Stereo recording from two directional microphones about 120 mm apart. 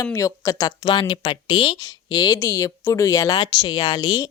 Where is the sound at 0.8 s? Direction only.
40° left (ahead or behind).